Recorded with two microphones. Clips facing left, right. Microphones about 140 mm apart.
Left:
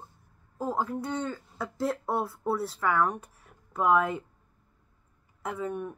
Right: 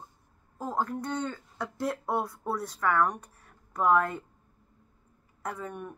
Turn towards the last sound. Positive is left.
turn(degrees=5)  # may be behind; listen again after turning